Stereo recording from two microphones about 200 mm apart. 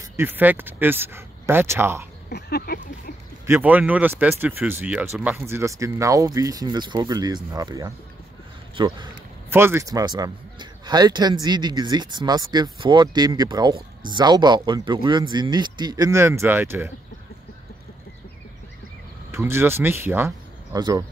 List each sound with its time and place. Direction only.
0.2 s speech: 10° right (ahead or behind)
2.2 s speech: 50° left (ahead or behind)
3.4 s a man's voice: 10° right (ahead or behind)
9.5 s a man's voice: 10° right (ahead or behind)
19.3 s speech: 10° right (ahead or behind)